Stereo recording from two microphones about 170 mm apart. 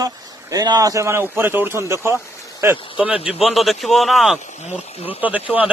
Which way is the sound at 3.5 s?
Centre (ahead or behind).